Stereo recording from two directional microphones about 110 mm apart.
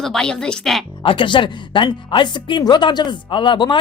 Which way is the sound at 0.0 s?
5° left (ahead or behind).